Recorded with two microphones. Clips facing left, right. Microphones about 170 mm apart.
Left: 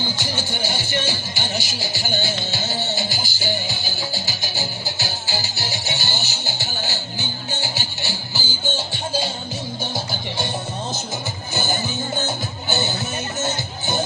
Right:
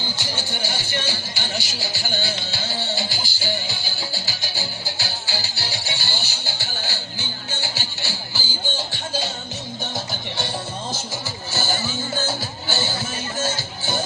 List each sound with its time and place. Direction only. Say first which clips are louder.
0.2 s music: left 3 dB; 15° left (ahead or behind)
11.5 s music: left 1 dB; 20° left (ahead or behind)